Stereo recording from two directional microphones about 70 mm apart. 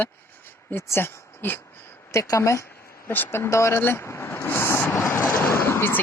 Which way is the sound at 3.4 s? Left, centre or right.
Left.